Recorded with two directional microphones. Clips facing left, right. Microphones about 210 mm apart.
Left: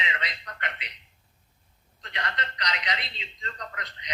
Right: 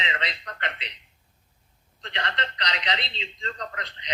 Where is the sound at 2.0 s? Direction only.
30° right (ahead or behind).